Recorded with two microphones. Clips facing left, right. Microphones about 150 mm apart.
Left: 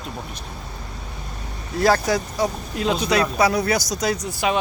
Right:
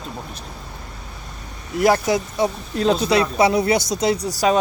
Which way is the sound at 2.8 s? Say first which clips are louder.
Right 3 dB; 35° right (ahead or behind).